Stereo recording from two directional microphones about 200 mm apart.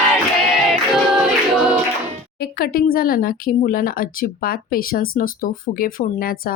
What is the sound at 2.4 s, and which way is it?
Speech, 50° left (ahead or behind).